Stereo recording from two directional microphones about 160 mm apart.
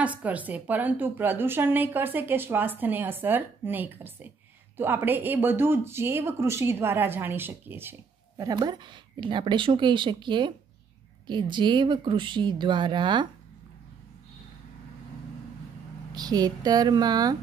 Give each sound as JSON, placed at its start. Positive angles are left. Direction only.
{"t": 0.0, "sound": "speech", "side_deg": -10}
{"t": 16.1, "sound": "speech", "side_deg": -25}